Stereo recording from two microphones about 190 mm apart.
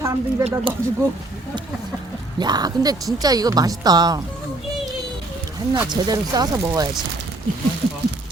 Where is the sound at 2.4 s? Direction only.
20° right (ahead or behind).